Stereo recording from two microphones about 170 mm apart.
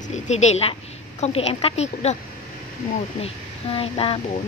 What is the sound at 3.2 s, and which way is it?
Speech, 35° left (ahead or behind).